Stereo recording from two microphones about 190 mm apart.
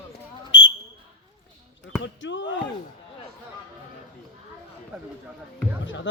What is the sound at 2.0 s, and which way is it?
Speech, 75° left (ahead or behind).